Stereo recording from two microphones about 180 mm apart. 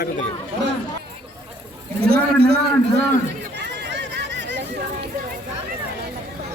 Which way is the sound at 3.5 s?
70° right (ahead or behind).